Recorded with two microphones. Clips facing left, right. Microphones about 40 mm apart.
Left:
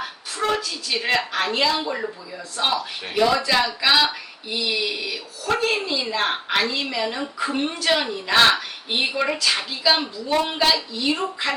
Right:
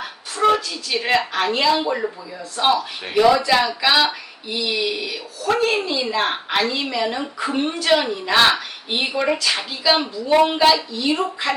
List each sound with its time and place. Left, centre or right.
0.4 s speech: centre